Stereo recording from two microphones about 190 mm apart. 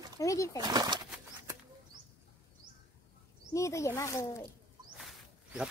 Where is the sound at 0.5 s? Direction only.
20° right (ahead or behind).